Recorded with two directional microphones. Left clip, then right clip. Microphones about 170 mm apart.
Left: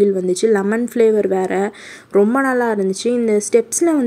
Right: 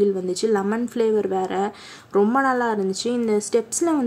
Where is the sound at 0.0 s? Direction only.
20° left (ahead or behind).